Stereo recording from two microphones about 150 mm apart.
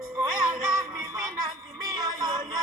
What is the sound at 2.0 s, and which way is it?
Music, 25° right (ahead or behind).